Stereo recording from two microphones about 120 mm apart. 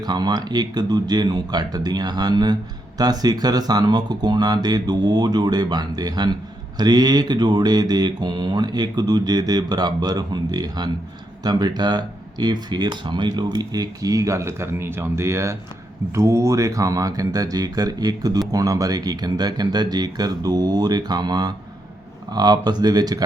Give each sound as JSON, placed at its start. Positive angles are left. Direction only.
{"t": 0.0, "sound": "speech", "side_deg": -35}